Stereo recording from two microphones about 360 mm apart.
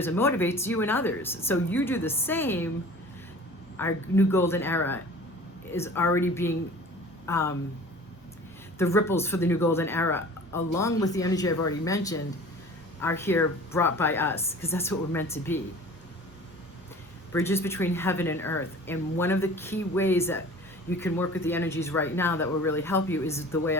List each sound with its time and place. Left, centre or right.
0.0 s a woman's voice: centre
3.8 s a woman's voice: centre
8.8 s a woman's voice: centre
11.5 s speech: left
11.9 s a woman's voice: centre
17.3 s a woman's voice: centre